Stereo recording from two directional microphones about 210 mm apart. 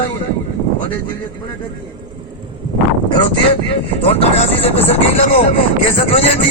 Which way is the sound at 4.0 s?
25° left (ahead or behind).